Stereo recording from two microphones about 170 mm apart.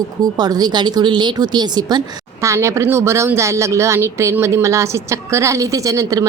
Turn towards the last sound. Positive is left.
turn(degrees=-20)  # may be behind; listen again after turning